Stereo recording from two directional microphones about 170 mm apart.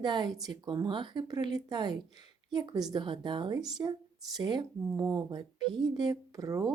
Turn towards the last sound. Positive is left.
turn(degrees=-20)  # may be behind; listen again after turning